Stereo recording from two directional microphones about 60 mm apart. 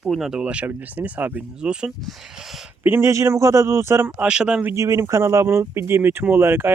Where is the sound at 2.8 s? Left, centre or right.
Right.